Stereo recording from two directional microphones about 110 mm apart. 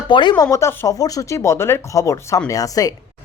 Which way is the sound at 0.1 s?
45° left (ahead or behind).